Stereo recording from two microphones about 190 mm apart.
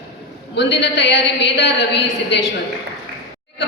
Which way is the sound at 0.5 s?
65° left (ahead or behind).